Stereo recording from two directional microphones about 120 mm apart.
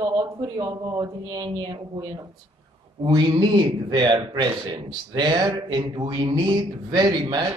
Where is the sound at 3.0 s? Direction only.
40° right (ahead or behind).